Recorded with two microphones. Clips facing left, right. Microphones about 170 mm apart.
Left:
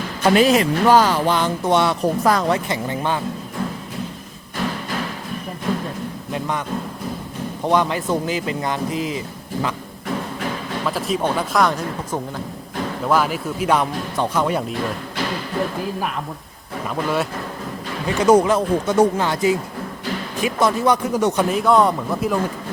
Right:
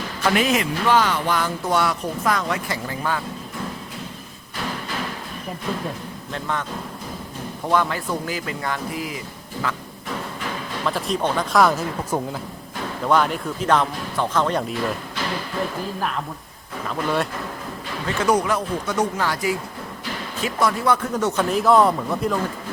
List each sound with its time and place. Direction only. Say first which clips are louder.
0.2 s speech: left 6 dB; 30° left (ahead or behind)
2.6 s speech: left 3 dB; 20° left (ahead or behind)
6.3 s speech: left 3 dB; 15° left (ahead or behind)
10.8 s speech: left 1 dB; 5° left (ahead or behind)
16.9 s speech: left 1 dB; centre (ahead or behind)
18.0 s speech: left 6 dB; 15° left (ahead or behind)
21.5 s speech: right 3 dB; centre (ahead or behind)